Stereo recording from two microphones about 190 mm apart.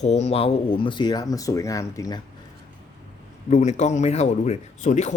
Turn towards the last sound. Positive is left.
turn(degrees=40)  # may be behind; listen again after turning